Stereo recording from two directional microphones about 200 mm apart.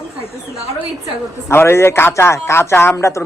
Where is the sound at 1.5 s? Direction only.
10° left (ahead or behind).